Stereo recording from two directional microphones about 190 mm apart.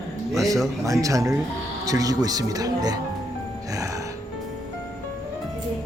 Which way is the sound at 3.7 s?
15° right (ahead or behind).